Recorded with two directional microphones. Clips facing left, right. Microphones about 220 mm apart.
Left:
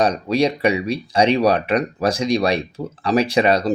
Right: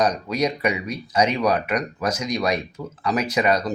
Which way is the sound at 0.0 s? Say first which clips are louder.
Left 4 dB; 30° left (ahead or behind).